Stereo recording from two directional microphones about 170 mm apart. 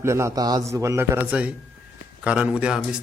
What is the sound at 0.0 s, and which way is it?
A man's voice, 15° right (ahead or behind).